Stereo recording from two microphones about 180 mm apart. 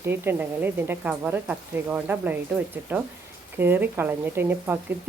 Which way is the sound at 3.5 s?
10° right (ahead or behind).